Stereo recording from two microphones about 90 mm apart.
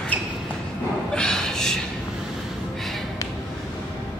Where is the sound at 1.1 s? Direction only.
5° left (ahead or behind).